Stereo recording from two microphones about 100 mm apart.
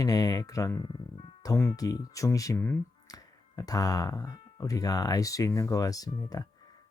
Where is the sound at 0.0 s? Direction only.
40° left (ahead or behind).